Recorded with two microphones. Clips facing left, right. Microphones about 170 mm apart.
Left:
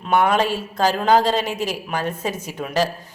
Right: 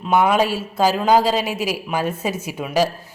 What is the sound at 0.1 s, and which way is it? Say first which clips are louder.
A woman's voice: right 1 dB; 10° right (ahead or behind).